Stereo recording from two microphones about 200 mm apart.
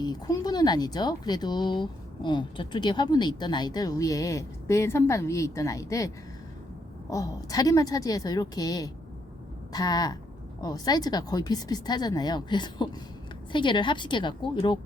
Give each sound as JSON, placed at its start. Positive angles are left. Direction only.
{"t": 0.0, "sound": "speech", "side_deg": 20}
{"t": 7.1, "sound": "a woman's voice", "side_deg": 15}